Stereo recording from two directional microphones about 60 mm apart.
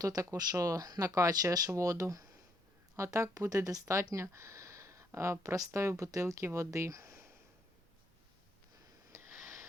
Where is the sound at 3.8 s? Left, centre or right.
Right.